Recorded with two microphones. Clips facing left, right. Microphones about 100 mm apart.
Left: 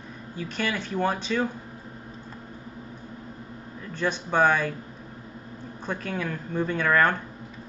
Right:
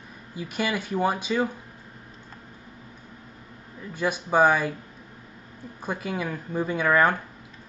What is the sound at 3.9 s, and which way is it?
Speech, 10° right (ahead or behind).